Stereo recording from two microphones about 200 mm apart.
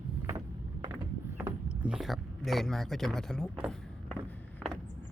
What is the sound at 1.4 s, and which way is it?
Mechanisms, 10° right (ahead or behind).